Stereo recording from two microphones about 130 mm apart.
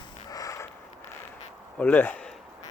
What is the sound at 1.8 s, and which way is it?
Speech, 15° left (ahead or behind).